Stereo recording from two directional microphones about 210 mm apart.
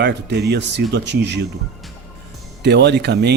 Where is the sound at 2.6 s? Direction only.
55° right (ahead or behind).